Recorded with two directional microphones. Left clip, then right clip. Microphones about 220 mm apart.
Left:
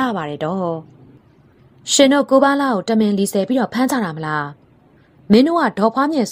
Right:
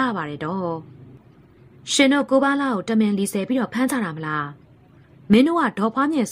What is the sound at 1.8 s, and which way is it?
A woman's voice, 15° left (ahead or behind).